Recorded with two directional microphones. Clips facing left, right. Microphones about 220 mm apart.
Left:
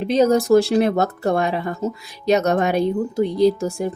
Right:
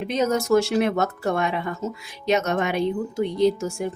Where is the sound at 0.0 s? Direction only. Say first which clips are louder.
Left 6 dB; 35° left (ahead or behind).